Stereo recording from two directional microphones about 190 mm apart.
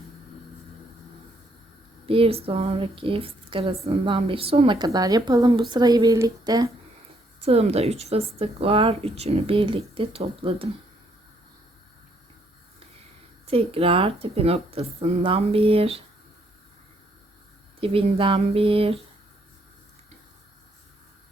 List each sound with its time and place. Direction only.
2.0 s a woman's voice: 30° right (ahead or behind)
7.4 s a woman's voice: 35° right (ahead or behind)
13.5 s a woman's voice: 30° right (ahead or behind)
17.7 s a woman's voice: 30° right (ahead or behind)